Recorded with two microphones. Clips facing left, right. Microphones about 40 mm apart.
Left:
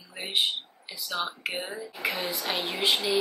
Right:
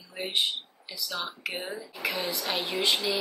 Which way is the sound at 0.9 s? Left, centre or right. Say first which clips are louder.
Left 3 dB; left.